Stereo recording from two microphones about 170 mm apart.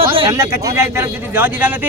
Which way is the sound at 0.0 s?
30° right (ahead or behind).